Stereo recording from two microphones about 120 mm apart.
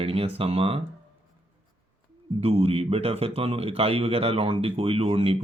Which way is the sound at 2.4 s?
55° right (ahead or behind).